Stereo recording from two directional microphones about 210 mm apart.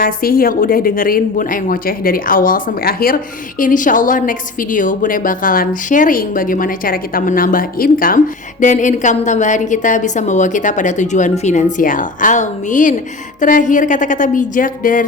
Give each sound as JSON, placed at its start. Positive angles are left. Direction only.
{"t": 0.0, "sound": "a woman's voice", "side_deg": 45}